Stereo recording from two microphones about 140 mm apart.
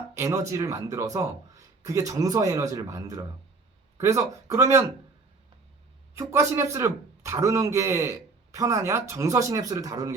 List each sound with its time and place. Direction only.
0.1 s speech: 20° right (ahead or behind)
6.1 s speech: 20° right (ahead or behind)